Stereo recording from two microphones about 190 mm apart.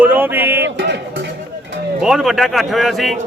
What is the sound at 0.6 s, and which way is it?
Music, 70° right (ahead or behind).